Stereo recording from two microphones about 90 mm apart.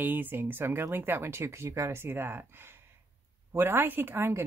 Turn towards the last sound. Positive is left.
turn(degrees=-25)  # may be behind; listen again after turning